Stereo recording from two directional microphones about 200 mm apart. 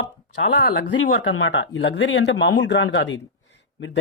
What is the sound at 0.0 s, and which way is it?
Speech, 60° left (ahead or behind).